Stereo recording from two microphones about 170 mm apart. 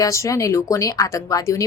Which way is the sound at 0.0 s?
20° left (ahead or behind).